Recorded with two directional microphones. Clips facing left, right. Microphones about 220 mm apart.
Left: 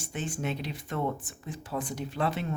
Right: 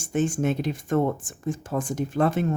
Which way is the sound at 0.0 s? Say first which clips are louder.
Right 10 dB; 45° right (ahead or behind).